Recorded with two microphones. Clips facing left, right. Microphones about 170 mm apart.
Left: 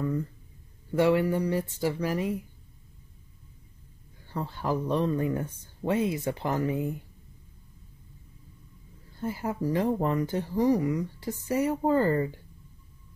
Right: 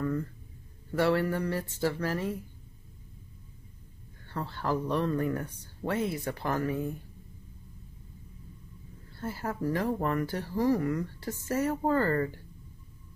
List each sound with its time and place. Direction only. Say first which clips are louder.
0.0 s speech: left 1 dB; 10° left (ahead or behind)
4.3 s speech: left 1 dB; 15° left (ahead or behind)
9.1 s speech: left 3 dB; 15° left (ahead or behind)